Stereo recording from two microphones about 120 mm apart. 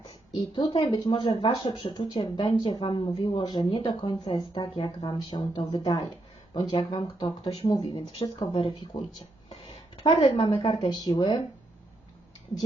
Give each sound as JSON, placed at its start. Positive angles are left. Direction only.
{"t": 0.3, "sound": "speech", "side_deg": 45}
{"t": 6.5, "sound": "speech", "side_deg": 45}
{"t": 7.5, "sound": "speech", "side_deg": 50}
{"t": 10.0, "sound": "speech", "side_deg": 50}
{"t": 10.8, "sound": "speech", "side_deg": 35}